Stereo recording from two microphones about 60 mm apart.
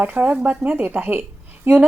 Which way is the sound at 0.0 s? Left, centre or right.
Right.